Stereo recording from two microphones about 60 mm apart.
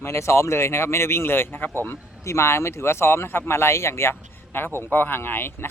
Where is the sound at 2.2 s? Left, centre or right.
Left.